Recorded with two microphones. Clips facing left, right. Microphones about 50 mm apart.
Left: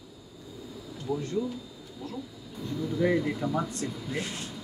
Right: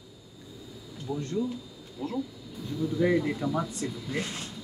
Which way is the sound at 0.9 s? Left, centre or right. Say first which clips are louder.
Left 1 dB; centre.